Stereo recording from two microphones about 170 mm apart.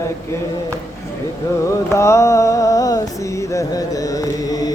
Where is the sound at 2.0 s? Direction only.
15° left (ahead or behind).